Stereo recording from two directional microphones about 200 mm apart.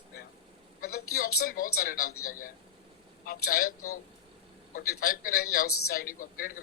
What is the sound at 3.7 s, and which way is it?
Speech, 90° left.